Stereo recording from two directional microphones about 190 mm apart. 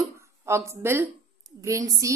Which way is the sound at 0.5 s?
15° right (ahead or behind).